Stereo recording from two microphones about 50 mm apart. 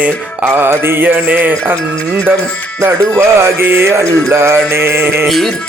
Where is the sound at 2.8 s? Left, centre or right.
Right.